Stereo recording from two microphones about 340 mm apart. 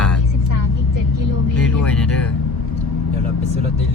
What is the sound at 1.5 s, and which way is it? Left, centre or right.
Music, centre.